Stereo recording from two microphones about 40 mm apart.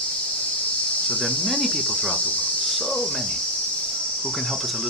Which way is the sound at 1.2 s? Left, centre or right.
Centre.